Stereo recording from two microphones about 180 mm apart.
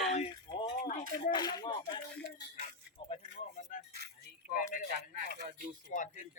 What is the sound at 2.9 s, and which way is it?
Music, 35° left (ahead or behind).